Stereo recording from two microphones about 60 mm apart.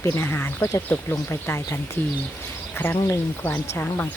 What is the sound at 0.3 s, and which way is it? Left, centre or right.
Speech, left.